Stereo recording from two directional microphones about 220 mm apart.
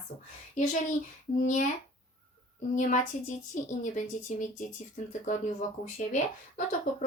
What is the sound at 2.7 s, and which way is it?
A woman's voice, 35° left (ahead or behind).